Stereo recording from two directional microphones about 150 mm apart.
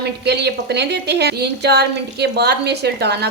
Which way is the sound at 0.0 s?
90° right.